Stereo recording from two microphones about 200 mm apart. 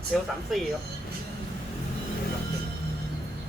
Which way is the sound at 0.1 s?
Centre (ahead or behind).